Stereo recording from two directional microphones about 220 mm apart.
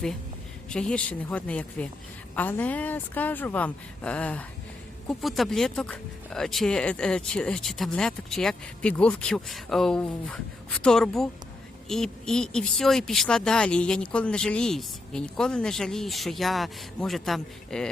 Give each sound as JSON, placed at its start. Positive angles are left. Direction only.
{"t": 0.7, "sound": "a woman's voice", "side_deg": 5}